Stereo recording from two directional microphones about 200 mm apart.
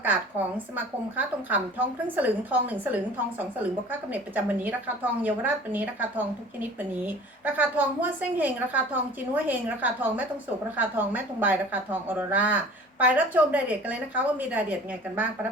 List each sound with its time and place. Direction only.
0.8 s a woman's voice: 10° right (ahead or behind)